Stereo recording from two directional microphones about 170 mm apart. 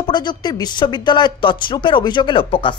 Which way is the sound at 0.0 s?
25° left (ahead or behind).